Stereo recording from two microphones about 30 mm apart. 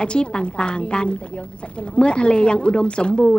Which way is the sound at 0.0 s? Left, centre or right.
Left.